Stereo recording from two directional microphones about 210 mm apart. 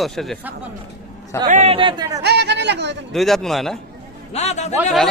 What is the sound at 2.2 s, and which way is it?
Speech, 50° right (ahead or behind).